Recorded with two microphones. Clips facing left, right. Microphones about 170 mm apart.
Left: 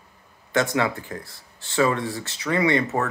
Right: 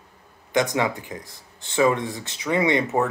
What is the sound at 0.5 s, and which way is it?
Speech, 15° right (ahead or behind).